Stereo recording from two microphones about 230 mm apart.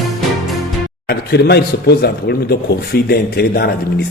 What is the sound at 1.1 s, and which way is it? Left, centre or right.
Speech, left.